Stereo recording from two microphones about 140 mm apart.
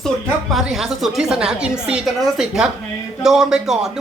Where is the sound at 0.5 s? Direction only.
5° right (ahead or behind).